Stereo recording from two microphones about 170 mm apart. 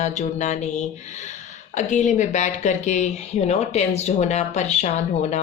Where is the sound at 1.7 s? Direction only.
45° left (ahead or behind).